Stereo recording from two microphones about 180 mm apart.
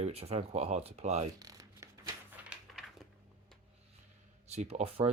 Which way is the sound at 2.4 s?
10° right (ahead or behind).